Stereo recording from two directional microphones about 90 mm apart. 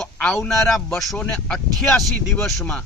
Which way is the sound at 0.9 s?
Centre (ahead or behind).